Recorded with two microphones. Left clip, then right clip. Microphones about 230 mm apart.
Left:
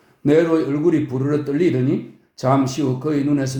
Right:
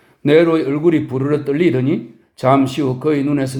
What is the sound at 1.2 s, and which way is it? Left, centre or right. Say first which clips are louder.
A man's voice: right 3 dB; right.